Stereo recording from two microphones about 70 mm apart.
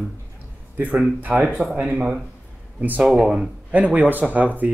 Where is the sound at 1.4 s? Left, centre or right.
Centre.